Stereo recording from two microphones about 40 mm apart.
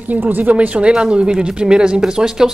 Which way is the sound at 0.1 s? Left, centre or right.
Right.